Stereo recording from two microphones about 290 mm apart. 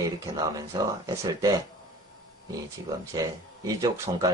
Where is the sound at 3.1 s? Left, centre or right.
Centre.